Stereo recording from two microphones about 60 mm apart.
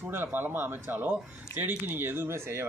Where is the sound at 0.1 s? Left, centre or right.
Right.